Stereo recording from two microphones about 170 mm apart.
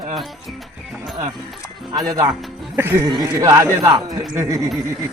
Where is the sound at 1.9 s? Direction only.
20° right (ahead or behind).